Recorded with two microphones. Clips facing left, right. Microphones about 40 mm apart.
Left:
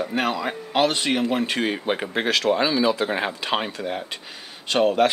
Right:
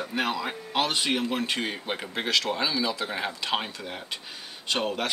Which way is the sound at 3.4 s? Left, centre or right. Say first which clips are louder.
Left 5 dB; centre.